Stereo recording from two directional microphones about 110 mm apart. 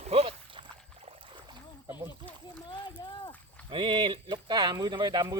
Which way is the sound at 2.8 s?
45° left (ahead or behind).